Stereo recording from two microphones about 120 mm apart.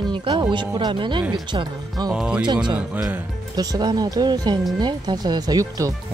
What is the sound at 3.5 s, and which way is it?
Speech, 35° right (ahead or behind).